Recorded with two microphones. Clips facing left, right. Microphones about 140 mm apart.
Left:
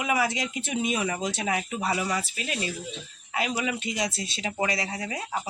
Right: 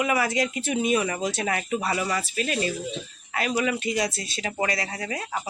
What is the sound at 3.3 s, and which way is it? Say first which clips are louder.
Speech: right 3 dB; 15° left (ahead or behind).